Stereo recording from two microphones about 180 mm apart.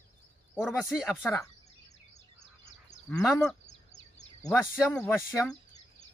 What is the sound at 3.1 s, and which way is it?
Speech, 5° left (ahead or behind).